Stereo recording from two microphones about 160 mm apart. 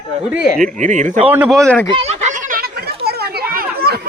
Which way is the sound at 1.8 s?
40° right (ahead or behind).